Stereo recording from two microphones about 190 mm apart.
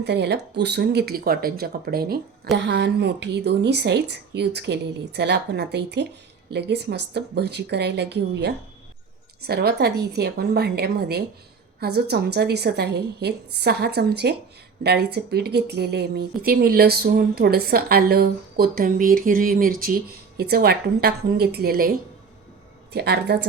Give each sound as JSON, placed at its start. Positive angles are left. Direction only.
{"t": 0.0, "sound": "speech", "side_deg": -60}